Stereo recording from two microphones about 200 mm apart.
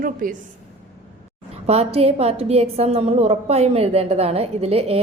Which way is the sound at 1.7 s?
30° right (ahead or behind).